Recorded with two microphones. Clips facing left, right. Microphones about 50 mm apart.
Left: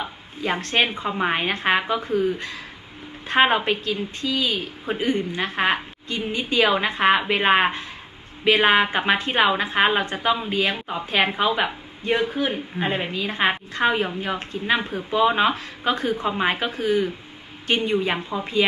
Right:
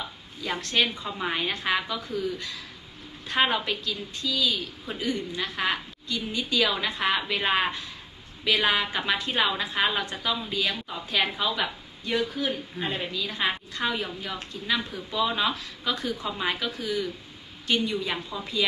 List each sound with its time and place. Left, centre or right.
0.0 s a woman's voice: left